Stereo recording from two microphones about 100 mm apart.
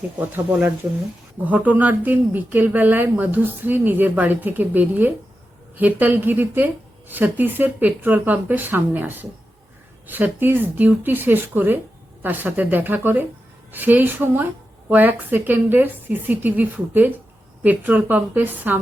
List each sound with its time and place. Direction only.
1.5 s a woman's voice: 15° right (ahead or behind)